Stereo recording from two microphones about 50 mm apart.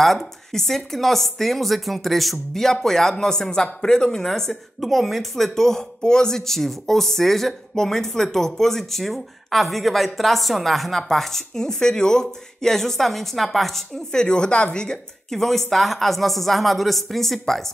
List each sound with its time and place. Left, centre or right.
0.2 s a woman's voice: centre
14.2 s speech: centre